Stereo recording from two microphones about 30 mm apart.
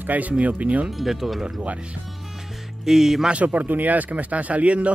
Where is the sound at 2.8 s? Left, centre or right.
Centre.